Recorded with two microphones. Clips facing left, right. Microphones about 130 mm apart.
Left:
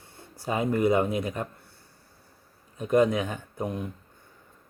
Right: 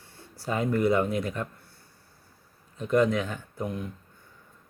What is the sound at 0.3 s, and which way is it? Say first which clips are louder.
Speech: left 1 dB; 20° left (ahead or behind).